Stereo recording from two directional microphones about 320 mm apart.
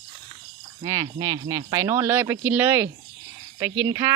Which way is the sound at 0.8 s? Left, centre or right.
Centre.